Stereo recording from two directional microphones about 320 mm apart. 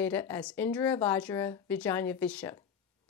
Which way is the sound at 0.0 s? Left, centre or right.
Centre.